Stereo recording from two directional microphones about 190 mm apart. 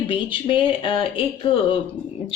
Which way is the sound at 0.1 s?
25° left (ahead or behind).